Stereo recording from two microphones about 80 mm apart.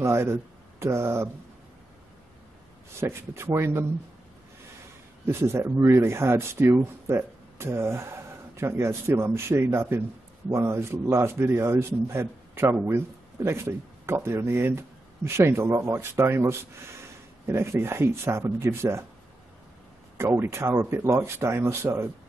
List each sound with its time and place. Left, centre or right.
0.0 s speech: right
3.0 s speech: right
5.2 s speech: right
20.2 s speech: right